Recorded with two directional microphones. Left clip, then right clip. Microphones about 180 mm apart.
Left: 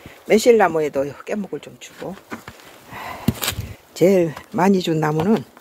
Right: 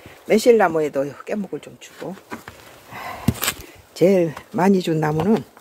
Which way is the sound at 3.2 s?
25° right (ahead or behind).